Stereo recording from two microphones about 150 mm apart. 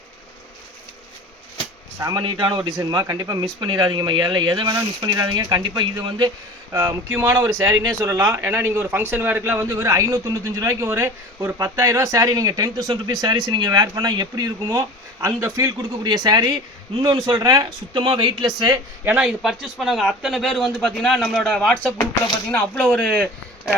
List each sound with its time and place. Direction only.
2.0 s speech: 25° right (ahead or behind)
6.7 s speech: 15° right (ahead or behind)
18.0 s speech: 35° right (ahead or behind)
19.0 s speech: 10° right (ahead or behind)